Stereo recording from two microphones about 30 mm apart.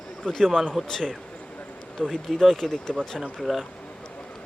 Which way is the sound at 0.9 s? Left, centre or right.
Centre.